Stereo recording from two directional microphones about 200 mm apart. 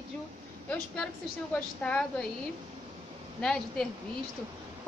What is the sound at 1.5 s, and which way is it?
Speech, 5° left (ahead or behind).